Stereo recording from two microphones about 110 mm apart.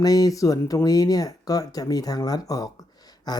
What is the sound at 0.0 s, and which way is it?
Speech, 35° left (ahead or behind).